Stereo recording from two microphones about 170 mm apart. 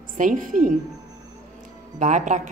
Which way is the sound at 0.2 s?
50° right (ahead or behind).